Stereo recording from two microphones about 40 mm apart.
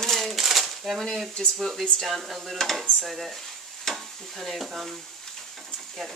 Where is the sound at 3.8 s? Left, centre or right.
Centre.